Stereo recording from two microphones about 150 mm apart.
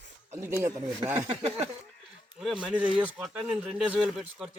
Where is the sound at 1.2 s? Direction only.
40° right (ahead or behind).